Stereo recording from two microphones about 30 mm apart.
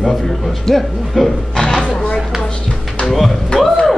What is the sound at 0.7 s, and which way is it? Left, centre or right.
Speech, centre.